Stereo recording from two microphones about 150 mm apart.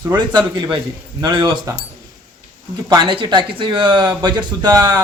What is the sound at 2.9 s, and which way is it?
A man's voice, 30° right (ahead or behind).